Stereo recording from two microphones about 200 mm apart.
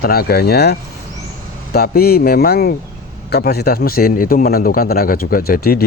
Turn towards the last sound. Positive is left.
turn(degrees=50)  # may be behind; listen again after turning